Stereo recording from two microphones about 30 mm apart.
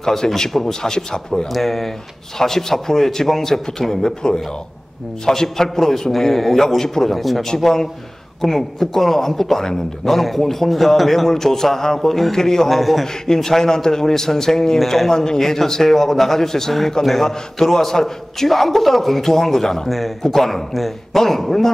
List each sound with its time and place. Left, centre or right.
0.0 s speech: centre
1.5 s a man's voice: centre
11.2 s a man's voice: centre
12.6 s a man's voice: centre
13.0 s a man's voice: centre